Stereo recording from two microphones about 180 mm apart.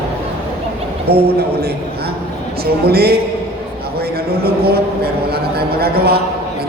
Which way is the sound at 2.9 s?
60° right (ahead or behind).